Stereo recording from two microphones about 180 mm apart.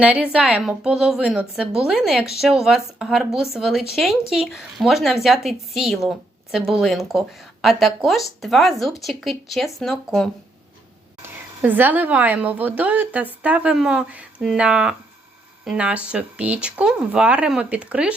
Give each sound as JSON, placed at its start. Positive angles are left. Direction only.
{"t": 0.0, "sound": "a woman's voice", "side_deg": -5}
{"t": 11.6, "sound": "a woman's voice", "side_deg": -10}